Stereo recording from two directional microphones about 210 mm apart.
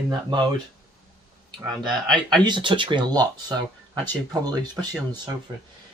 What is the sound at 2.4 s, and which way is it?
Speech, 20° right (ahead or behind).